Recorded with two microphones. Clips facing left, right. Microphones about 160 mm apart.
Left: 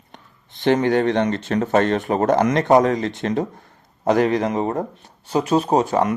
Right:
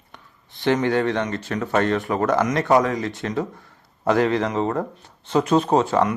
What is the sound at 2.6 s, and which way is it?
Speech, 25° left (ahead or behind).